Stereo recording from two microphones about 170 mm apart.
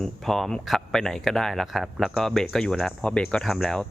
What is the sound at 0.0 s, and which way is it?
Speech, centre (ahead or behind).